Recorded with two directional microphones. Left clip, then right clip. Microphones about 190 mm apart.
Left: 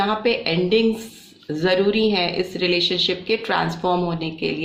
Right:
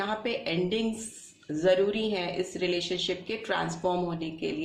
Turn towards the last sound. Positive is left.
turn(degrees=30)  # may be behind; listen again after turning